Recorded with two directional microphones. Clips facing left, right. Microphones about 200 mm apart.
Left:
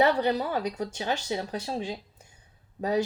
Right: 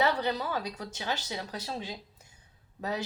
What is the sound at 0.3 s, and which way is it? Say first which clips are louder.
Speech: left 5 dB; 35° left (ahead or behind).